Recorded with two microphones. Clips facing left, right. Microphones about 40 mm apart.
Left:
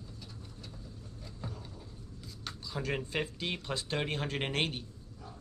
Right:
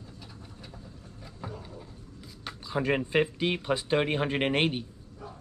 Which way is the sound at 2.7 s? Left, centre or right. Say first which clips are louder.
Right 9 dB; right.